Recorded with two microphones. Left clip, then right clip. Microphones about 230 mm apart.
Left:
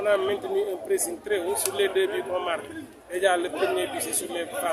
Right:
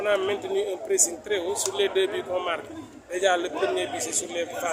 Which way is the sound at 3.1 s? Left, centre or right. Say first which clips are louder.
Even; centre.